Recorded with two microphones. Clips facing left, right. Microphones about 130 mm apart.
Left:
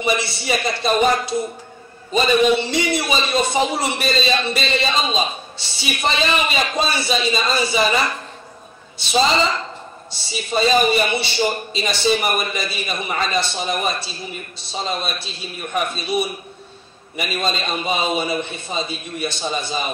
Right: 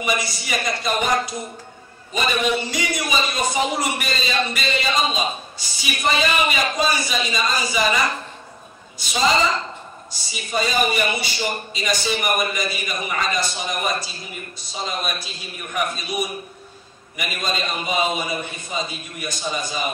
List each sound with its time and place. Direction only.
0.0 s a man's voice: 30° left (ahead or behind)
10.1 s a man's voice: 30° left (ahead or behind)